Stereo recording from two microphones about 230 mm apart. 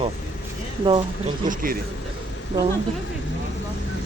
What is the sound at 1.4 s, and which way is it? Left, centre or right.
Speech, right.